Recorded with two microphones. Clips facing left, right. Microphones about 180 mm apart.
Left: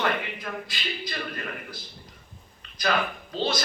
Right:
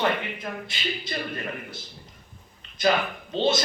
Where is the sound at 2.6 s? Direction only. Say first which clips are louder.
Left 1 dB; 25° right (ahead or behind).